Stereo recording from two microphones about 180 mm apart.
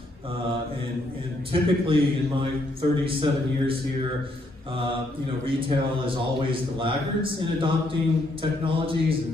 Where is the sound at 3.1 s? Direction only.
30° right (ahead or behind).